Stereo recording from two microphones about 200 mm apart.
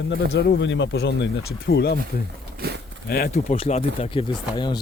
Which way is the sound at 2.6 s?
55° right (ahead or behind).